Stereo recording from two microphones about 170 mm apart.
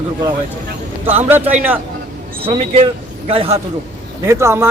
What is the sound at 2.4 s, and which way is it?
Speech, 35° right (ahead or behind).